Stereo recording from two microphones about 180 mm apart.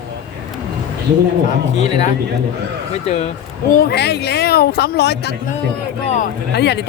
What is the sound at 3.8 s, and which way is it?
Speech, 65° left (ahead or behind).